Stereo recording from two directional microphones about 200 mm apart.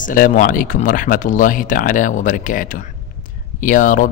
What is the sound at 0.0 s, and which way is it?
Speech, 40° left (ahead or behind).